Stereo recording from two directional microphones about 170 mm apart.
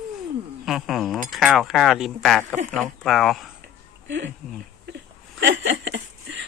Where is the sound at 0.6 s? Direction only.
Centre (ahead or behind).